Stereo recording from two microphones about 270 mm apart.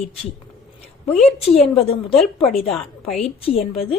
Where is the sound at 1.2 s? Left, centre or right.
Left.